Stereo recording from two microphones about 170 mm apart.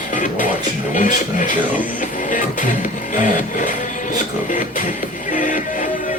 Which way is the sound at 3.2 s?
50° left (ahead or behind).